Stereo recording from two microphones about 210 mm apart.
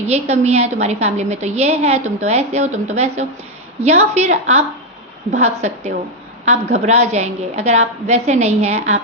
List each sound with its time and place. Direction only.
0.1 s a woman's voice: 30° right (ahead or behind)